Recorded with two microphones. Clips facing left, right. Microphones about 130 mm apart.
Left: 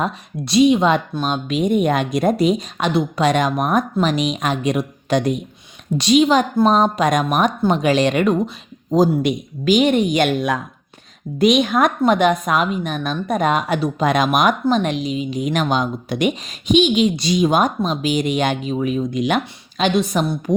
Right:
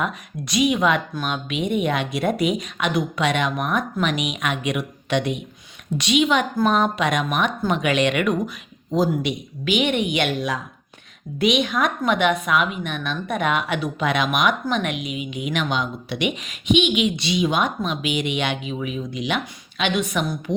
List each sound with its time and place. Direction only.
0.0 s a woman's voice: 30° left (ahead or behind)